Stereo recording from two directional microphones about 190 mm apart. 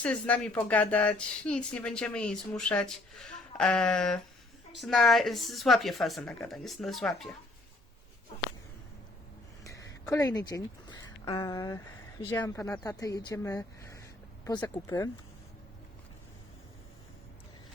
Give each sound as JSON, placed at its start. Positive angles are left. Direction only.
{"t": 0.0, "sound": "speech", "side_deg": 5}
{"t": 9.6, "sound": "a sound", "side_deg": 15}
{"t": 12.4, "sound": "a woman's voice", "side_deg": 15}